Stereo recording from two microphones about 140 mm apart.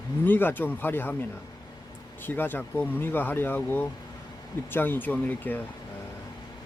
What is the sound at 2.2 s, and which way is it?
Speech, 15° left (ahead or behind).